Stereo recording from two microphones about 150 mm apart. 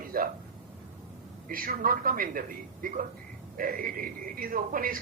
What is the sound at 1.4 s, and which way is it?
Speech, 70° right (ahead or behind).